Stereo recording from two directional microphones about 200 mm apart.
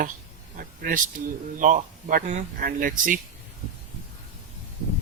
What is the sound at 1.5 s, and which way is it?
Speech, 40° right (ahead or behind).